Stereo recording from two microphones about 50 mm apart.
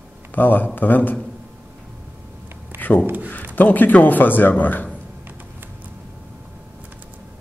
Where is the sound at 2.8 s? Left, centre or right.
Left.